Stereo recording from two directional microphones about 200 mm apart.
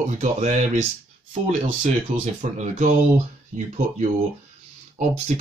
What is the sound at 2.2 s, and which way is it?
Speech, 35° right (ahead or behind).